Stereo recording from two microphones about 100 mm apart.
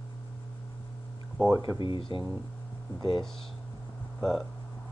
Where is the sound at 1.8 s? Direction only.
60° left (ahead or behind).